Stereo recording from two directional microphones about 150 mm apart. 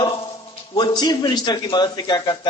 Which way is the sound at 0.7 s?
30° left (ahead or behind).